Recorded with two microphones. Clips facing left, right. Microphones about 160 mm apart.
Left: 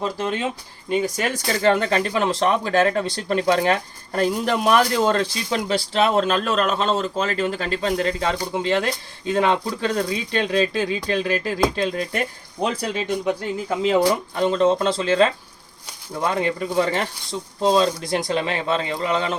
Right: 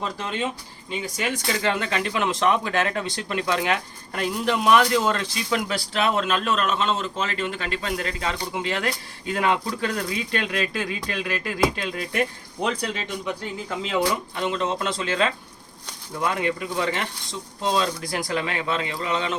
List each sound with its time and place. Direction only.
0.9 s speech: 45° left (ahead or behind)
12.6 s speech: 45° left (ahead or behind)